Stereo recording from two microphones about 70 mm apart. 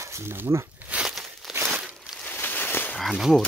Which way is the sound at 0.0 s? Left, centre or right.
Right.